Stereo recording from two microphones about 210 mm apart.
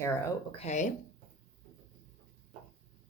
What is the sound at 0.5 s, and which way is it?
Speech, 30° left (ahead or behind).